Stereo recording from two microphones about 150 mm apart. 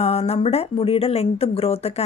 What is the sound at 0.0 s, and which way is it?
Speech, 45° left (ahead or behind).